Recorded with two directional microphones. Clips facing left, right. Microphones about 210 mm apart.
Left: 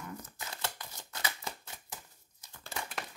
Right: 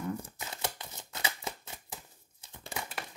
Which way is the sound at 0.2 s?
25° right (ahead or behind).